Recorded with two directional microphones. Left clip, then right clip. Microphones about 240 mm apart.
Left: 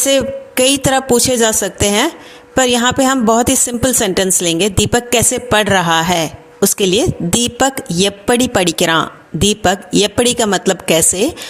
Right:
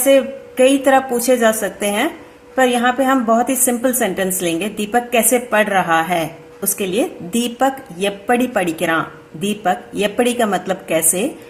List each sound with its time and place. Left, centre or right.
0.0 s speech: left